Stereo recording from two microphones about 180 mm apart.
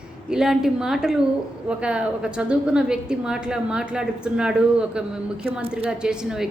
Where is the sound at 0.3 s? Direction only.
5° right (ahead or behind).